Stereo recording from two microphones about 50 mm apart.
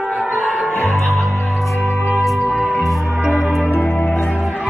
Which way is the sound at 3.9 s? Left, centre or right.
Left.